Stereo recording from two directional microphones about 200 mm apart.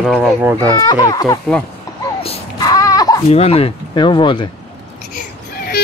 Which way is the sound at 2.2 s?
25° left (ahead or behind).